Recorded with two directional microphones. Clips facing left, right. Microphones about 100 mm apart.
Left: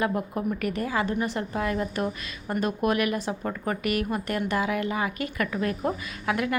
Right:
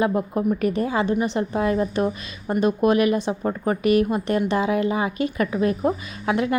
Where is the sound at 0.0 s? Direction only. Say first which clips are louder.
Right 5 dB; 25° right (ahead or behind).